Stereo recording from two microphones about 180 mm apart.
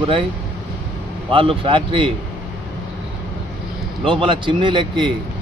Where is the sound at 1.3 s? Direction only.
30° right (ahead or behind).